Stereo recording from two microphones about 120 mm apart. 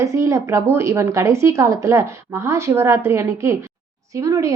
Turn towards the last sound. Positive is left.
turn(degrees=-25)  # may be behind; listen again after turning